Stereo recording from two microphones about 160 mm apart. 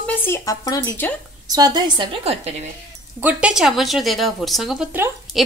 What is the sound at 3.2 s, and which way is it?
Speech, 10° right (ahead or behind).